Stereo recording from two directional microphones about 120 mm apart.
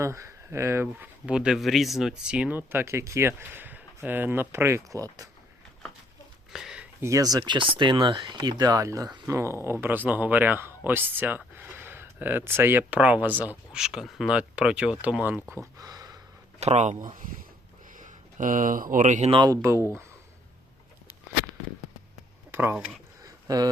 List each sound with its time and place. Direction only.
0.0 s speech: 25° right (ahead or behind)
6.5 s a sound: 5° right (ahead or behind)
7.0 s speech: 30° right (ahead or behind); by 15.4 s 10° right (ahead or behind)
15.4 s speech: 10° left (ahead or behind)
15.8 s a sound: 30° right (ahead or behind)
16.6 s speech: 70° right (ahead or behind); by 19.3 s 90° right
19.5 s speech: 25° right (ahead or behind)
23.5 s speech: 30° right (ahead or behind)